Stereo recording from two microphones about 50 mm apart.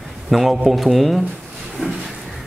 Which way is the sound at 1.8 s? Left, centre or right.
Right.